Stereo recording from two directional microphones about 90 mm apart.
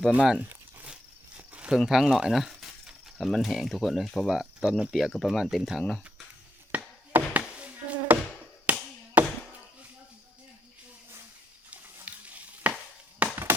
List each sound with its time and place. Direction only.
0.1 s speech: 10° right (ahead or behind)
1.4 s a sound: 15° right (ahead or behind)
1.7 s speech: 5° right (ahead or behind)
4.3 s speech: 10° right (ahead or behind)
6.7 s a sound: 20° right (ahead or behind)
7.3 s insect: 15° right (ahead or behind)
8.7 s tap: 15° right (ahead or behind)
9.2 s chop: 15° right (ahead or behind)
11.7 s stir: 15° right (ahead or behind)
13.2 s a sound: 15° right (ahead or behind)